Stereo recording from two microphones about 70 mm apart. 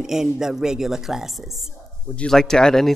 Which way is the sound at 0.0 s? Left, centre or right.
Centre.